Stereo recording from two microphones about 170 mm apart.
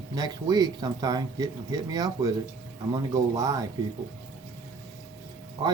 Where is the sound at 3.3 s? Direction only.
20° right (ahead or behind).